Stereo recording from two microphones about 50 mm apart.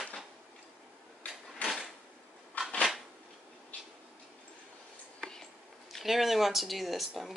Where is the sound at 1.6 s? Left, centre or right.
Left.